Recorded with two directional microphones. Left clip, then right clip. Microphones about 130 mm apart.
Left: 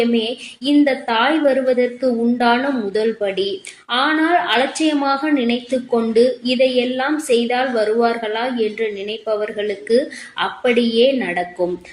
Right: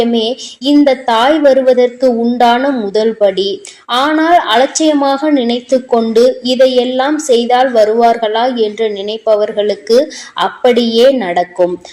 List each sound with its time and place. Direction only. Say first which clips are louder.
0.1 s a woman's voice: right 6 dB; 35° right (ahead or behind)